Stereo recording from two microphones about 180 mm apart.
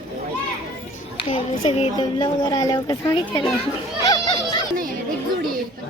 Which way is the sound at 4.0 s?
20° left (ahead or behind).